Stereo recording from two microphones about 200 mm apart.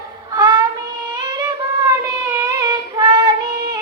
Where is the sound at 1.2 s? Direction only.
20° right (ahead or behind).